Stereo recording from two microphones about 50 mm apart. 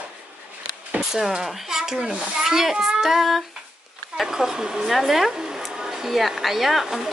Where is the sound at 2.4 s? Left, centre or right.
Centre.